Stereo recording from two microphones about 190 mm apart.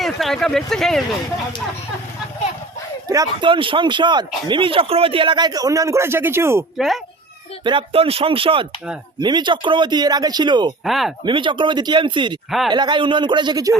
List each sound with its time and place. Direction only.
0.0 s speech: centre (ahead or behind)
3.1 s speech: 20° right (ahead or behind)
6.7 s speech: centre (ahead or behind)
7.6 s speech: 25° right (ahead or behind)
10.8 s speech: centre (ahead or behind)
11.3 s speech: 25° right (ahead or behind)
12.5 s speech: centre (ahead or behind)
12.7 s speech: 25° right (ahead or behind)